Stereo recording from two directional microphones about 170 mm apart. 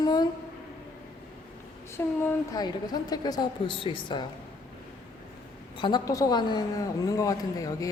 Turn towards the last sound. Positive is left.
turn(degrees=20)  # may be behind; listen again after turning